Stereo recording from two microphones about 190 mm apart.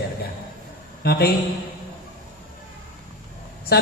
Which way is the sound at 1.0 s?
55° left (ahead or behind).